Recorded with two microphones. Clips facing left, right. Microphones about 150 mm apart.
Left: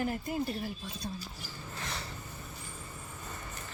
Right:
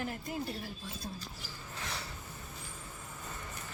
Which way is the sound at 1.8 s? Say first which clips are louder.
Left 1 dB; 10° right (ahead or behind).